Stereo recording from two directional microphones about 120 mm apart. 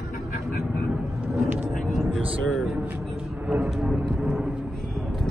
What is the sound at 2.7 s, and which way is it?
A man's voice, 15° right (ahead or behind).